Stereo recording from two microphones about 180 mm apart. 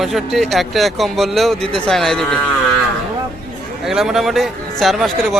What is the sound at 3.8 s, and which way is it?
Speech, centre (ahead or behind).